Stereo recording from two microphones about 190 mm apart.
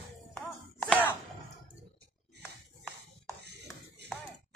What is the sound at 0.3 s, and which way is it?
Chopping, 5° left (ahead or behind).